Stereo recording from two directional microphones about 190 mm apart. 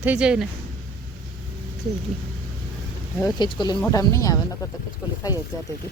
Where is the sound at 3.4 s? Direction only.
25° left (ahead or behind).